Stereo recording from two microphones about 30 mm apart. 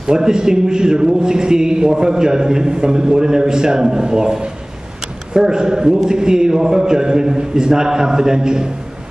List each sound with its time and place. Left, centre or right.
0.0 s a man's voice: right